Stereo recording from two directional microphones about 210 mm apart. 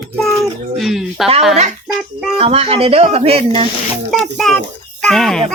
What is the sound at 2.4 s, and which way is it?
Speech, 30° right (ahead or behind).